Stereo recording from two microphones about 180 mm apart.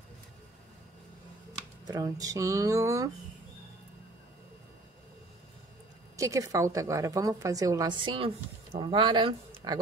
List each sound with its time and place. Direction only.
1.9 s speech: 20° right (ahead or behind)
6.1 s a woman's voice: 15° right (ahead or behind)